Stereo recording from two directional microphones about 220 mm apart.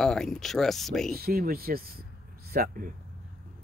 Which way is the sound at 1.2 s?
40° right (ahead or behind).